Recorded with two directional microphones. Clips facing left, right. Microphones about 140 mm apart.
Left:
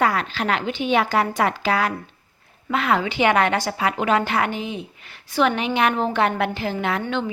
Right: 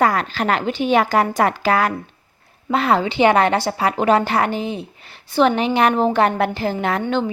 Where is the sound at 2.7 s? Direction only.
35° right (ahead or behind).